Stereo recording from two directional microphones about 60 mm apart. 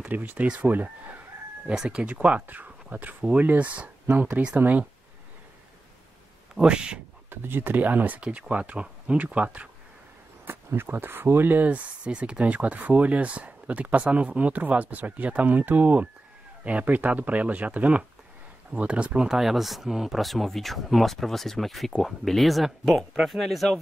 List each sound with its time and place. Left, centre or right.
0.1 s speech: right
1.7 s speech: centre; by 4.8 s right
6.5 s speech: centre
7.2 s speech: right
10.4 s speech: right; by 23.8 s centre